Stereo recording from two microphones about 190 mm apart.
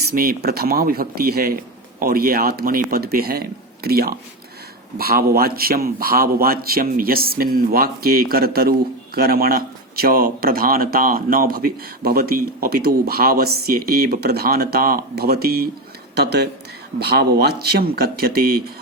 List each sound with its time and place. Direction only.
0.2 s speech: 50° right (ahead or behind)